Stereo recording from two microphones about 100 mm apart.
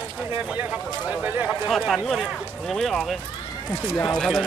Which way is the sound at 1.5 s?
Centre (ahead or behind).